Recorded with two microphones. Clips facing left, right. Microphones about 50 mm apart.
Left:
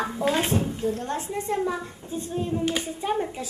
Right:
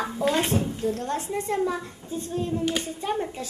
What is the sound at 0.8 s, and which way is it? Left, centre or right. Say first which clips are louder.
Speech: even; left.